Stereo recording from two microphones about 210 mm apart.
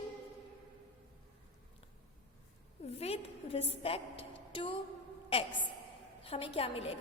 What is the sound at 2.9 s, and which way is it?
A woman's voice, 30° left (ahead or behind).